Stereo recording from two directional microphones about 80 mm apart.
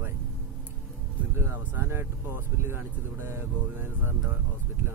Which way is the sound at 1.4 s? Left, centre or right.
Right.